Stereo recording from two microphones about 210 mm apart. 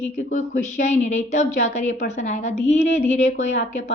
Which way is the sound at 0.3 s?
35° left (ahead or behind).